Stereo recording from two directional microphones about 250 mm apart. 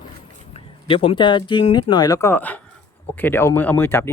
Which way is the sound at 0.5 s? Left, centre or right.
Left.